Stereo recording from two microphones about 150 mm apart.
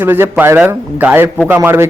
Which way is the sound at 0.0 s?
15° right (ahead or behind).